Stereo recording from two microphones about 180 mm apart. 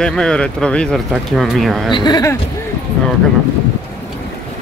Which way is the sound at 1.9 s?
25° left (ahead or behind).